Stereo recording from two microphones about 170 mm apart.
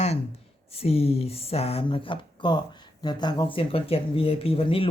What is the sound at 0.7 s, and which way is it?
Speech, 35° left (ahead or behind).